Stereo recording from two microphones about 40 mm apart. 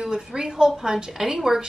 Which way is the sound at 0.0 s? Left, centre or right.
Centre.